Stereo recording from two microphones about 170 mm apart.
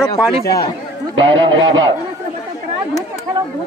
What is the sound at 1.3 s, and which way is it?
Speech, 90° right.